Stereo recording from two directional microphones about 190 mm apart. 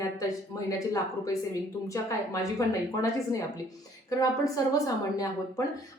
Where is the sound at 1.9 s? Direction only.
15° left (ahead or behind).